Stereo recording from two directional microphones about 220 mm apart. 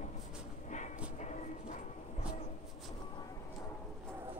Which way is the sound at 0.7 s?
35° left (ahead or behind).